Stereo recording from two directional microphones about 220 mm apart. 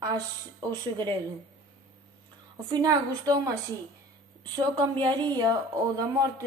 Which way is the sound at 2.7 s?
20° right (ahead or behind).